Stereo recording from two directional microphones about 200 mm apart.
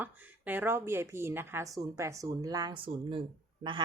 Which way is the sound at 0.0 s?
10° right (ahead or behind).